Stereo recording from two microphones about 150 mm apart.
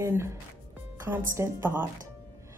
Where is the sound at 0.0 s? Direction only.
20° right (ahead or behind).